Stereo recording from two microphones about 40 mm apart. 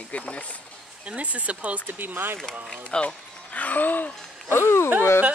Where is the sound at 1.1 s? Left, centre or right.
Right.